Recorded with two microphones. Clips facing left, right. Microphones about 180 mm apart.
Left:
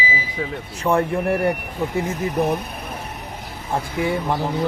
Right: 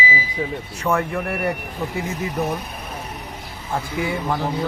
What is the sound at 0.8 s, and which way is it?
Speech, 30° left (ahead or behind).